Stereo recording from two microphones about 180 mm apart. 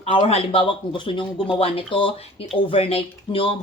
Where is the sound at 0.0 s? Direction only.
35° left (ahead or behind).